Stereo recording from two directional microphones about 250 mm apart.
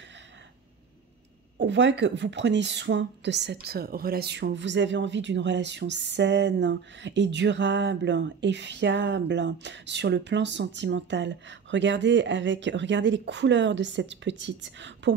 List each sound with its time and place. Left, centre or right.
1.6 s speech: right